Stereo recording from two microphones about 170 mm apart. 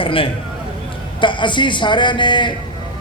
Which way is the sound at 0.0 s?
30° left (ahead or behind).